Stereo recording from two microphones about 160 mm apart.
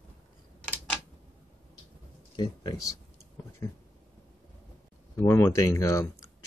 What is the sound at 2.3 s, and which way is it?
Speech, 25° left (ahead or behind).